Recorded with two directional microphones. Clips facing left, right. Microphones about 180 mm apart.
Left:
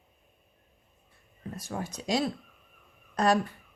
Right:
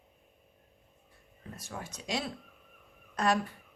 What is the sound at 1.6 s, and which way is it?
Speech, 35° left (ahead or behind).